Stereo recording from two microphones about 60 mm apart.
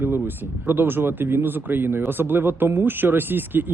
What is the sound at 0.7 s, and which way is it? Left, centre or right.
Speech, right.